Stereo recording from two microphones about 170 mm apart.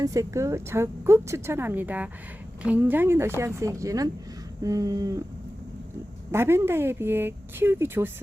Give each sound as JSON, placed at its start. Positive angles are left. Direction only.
{"t": 0.0, "sound": "a woman's voice", "side_deg": -20}
{"t": 4.6, "sound": "a sound", "side_deg": -20}
{"t": 6.3, "sound": "a woman's voice", "side_deg": -15}